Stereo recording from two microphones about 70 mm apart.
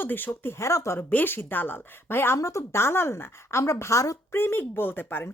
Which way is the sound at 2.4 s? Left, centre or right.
Left.